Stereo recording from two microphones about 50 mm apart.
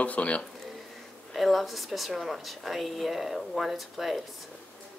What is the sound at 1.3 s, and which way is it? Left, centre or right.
Speech, centre.